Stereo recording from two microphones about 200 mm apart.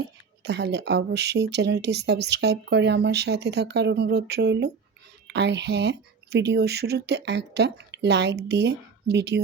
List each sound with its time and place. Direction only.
0.4 s speech: 55° right (ahead or behind)